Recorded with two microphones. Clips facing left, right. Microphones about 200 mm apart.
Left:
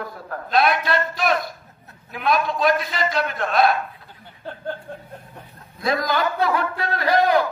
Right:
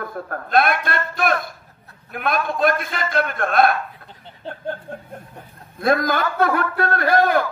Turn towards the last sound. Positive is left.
turn(degrees=-50)  # may be behind; listen again after turning